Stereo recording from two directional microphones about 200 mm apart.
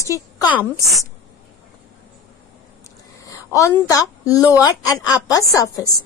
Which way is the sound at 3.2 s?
15° left (ahead or behind).